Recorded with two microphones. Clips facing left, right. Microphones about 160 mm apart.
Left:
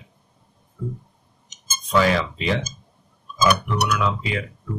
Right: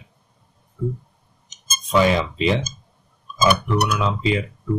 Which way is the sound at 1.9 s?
20° right (ahead or behind).